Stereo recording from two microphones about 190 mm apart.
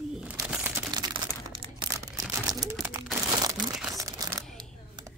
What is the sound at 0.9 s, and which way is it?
Crumpling, 25° right (ahead or behind).